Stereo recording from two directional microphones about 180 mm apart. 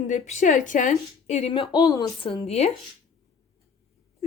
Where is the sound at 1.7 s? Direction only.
20° left (ahead or behind); by 2.7 s 35° left (ahead or behind).